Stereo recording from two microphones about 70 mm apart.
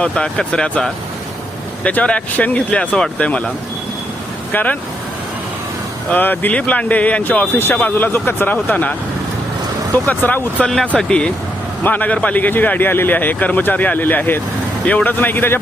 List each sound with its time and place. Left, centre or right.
0.0 s speech: centre
4.5 s speech: left
6.1 s speech: left
10.6 s speech: centre
11.8 s speech: left